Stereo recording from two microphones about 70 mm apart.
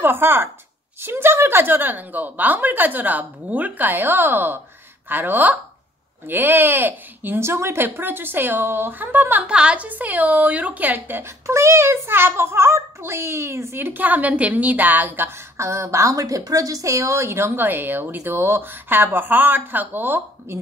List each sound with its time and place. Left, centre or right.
0.0 s a woman's voice: right
9.5 s a woman's voice: centre
11.4 s a woman's voice: right
13.8 s a woman's voice: right